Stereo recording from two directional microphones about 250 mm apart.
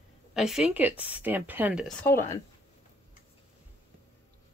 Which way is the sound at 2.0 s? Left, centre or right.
Centre.